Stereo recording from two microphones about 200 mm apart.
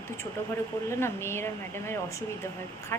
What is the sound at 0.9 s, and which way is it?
Speech, 10° left (ahead or behind).